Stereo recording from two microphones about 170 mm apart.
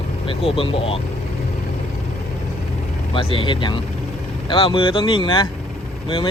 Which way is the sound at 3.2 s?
30° left (ahead or behind).